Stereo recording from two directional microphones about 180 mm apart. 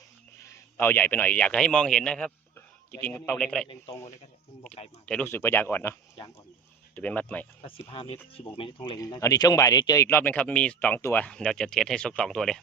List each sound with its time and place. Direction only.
0.4 s a man's voice: 10° left (ahead or behind)
5.0 s speech: 10° left (ahead or behind)
7.6 s speech: 30° left (ahead or behind); by 12.5 s 5° left (ahead or behind)